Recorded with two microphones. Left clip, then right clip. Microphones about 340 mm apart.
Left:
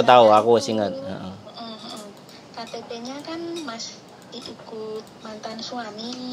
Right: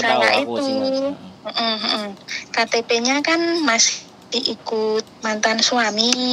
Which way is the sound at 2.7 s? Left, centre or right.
Right.